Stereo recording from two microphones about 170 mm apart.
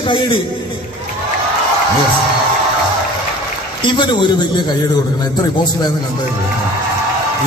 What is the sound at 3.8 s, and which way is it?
A man's voice, 25° left (ahead or behind).